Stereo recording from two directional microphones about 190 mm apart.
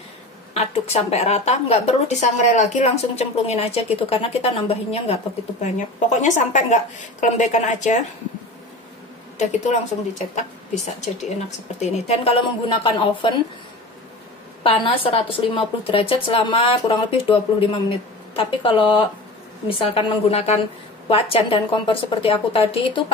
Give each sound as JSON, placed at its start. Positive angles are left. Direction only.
{"t": 0.6, "sound": "a woman's voice", "side_deg": 35}
{"t": 10.1, "sound": "a woman's voice", "side_deg": 40}
{"t": 14.6, "sound": "a woman's voice", "side_deg": 30}